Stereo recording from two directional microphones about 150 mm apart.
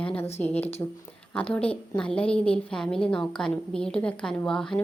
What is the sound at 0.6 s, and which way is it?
Speech, 45° left (ahead or behind).